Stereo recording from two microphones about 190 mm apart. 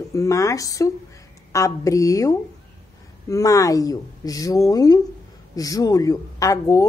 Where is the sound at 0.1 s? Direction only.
15° left (ahead or behind).